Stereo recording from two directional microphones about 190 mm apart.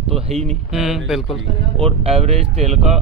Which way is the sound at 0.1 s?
35° right (ahead or behind).